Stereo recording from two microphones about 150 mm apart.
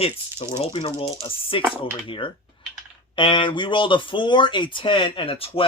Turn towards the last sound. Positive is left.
turn(degrees=40)  # may be behind; listen again after turning